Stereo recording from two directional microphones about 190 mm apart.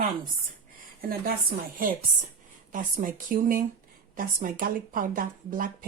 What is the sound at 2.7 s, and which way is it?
Speech, 45° right (ahead or behind).